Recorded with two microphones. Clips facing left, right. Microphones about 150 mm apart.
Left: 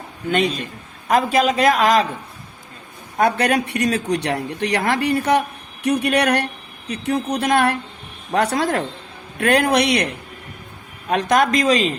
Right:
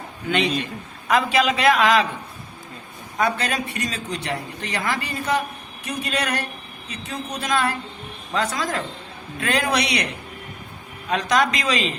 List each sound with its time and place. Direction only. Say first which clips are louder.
0.3 s a man's voice: left 2 dB; 45° left (ahead or behind)
3.2 s a man's voice: left 6 dB; 60° left (ahead or behind)
11.1 s a man's voice: left 4 dB; 50° left (ahead or behind)